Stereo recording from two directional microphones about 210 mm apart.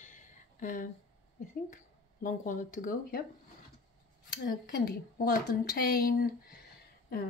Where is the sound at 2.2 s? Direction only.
40° left (ahead or behind).